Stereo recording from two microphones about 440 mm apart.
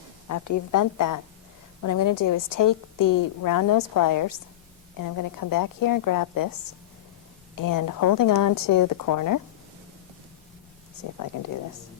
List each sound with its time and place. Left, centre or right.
0.3 s a woman's voice: left
7.5 s a woman's voice: left
11.3 s a woman's voice: left